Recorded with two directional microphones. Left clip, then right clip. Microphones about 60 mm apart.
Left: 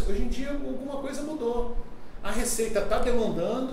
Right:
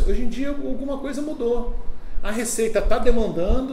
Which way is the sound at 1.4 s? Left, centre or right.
Right.